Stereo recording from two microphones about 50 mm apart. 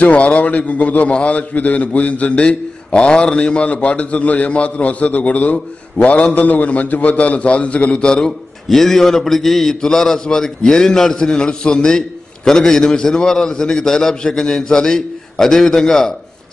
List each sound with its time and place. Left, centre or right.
0.0 s a man's voice: left
8.6 s a man's voice: centre